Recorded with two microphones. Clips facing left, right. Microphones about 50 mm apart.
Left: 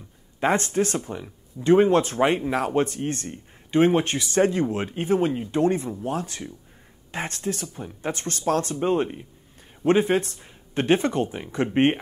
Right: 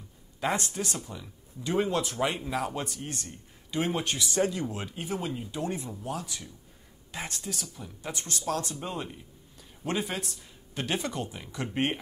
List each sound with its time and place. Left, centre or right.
0.4 s speech: left